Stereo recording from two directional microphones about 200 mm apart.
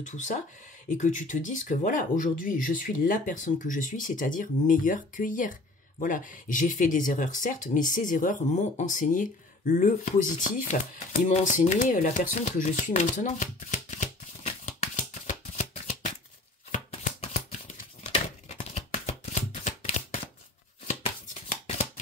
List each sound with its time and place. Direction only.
0.0 s speech: 40° left (ahead or behind)
16.7 s shuffling cards: 35° left (ahead or behind)
18.6 s a sound: 35° left (ahead or behind)
20.8 s shuffling cards: 35° left (ahead or behind)